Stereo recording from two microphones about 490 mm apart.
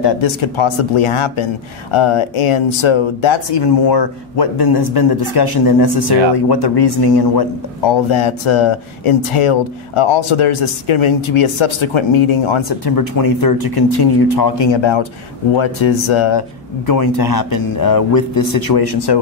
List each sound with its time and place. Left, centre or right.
0.0 s a man's voice: left
8.1 s speech: left
12.9 s a man's voice: left
16.8 s a man's voice: left